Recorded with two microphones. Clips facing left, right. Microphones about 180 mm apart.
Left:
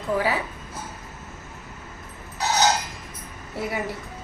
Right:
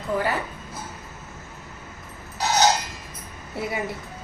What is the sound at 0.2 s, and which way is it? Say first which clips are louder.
Speech: even; 5° left (ahead or behind).